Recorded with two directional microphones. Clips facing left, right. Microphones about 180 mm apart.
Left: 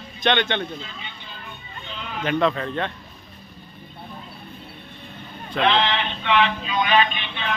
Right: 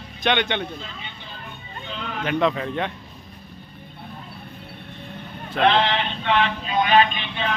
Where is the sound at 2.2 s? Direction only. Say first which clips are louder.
Even; 10° right (ahead or behind).